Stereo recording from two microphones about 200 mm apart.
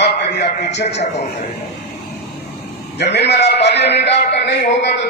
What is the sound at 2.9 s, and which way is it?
A man's voice, 55° left (ahead or behind).